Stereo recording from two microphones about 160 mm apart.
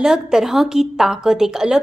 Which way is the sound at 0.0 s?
5° right (ahead or behind).